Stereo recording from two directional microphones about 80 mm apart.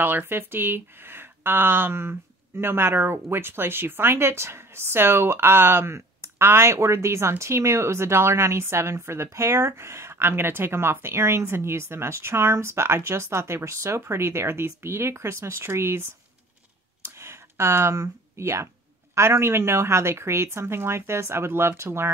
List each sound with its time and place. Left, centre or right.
0.0 s speech: right
17.2 s speech: right